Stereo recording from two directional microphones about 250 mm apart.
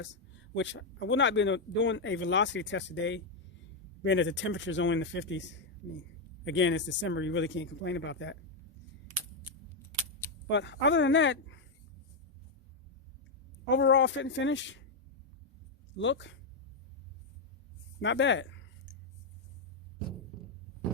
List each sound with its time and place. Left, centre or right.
0.0 s speech: left
10.5 s speech: left
13.7 s speech: left
16.0 s speech: left
18.0 s speech: left